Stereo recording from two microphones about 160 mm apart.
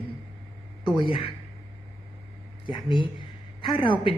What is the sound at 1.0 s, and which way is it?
Speech, 35° left (ahead or behind).